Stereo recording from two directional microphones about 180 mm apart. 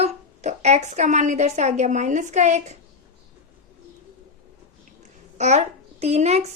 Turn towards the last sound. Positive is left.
turn(degrees=-35)  # may be behind; listen again after turning